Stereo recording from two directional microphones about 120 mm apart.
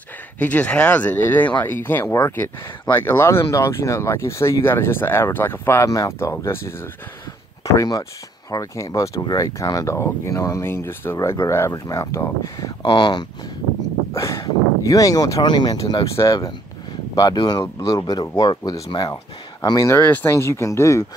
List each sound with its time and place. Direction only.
0.4 s speech: 10° left (ahead or behind)
7.7 s speech: 30° left (ahead or behind)
12.8 s speech: 40° left (ahead or behind)
14.1 s speech: 25° left (ahead or behind)
20.1 s speech: 20° left (ahead or behind)